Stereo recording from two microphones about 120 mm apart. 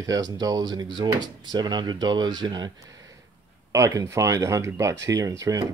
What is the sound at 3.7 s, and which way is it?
Speech, 25° right (ahead or behind).